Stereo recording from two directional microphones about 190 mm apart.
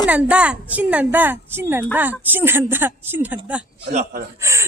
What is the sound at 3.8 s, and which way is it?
Speech, 40° right (ahead or behind).